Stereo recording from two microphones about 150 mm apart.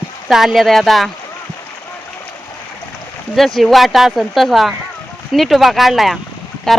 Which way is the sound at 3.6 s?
Centre (ahead or behind).